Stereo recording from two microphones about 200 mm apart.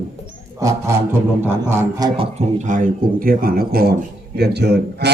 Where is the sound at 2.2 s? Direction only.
35° right (ahead or behind); by 5.1 s 55° right (ahead or behind).